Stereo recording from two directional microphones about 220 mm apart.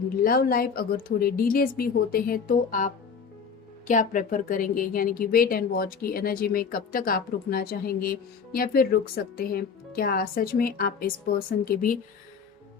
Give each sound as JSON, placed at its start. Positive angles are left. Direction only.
{"t": 0.3, "sound": "a woman's voice", "side_deg": 40}